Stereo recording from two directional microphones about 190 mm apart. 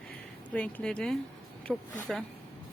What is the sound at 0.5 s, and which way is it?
Speech, 5° left (ahead or behind).